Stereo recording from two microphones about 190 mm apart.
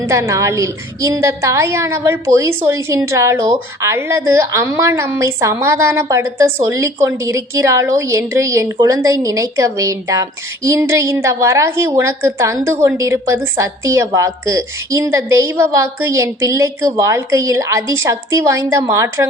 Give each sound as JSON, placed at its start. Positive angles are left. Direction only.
{"t": 0.1, "sound": "a woman's voice", "side_deg": -15}